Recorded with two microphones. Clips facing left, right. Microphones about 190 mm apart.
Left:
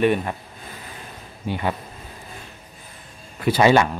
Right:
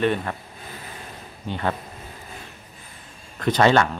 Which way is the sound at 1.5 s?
10° left (ahead or behind).